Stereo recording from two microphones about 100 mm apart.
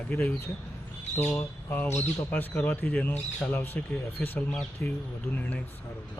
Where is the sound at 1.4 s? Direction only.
20° left (ahead or behind).